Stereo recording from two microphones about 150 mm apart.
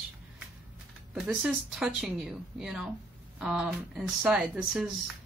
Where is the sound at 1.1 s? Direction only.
5° right (ahead or behind).